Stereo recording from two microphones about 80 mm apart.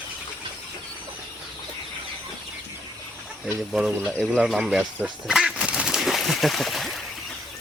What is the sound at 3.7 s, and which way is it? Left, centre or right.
Speech, centre.